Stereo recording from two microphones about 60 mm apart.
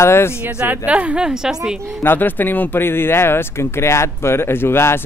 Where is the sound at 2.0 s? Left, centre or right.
Left.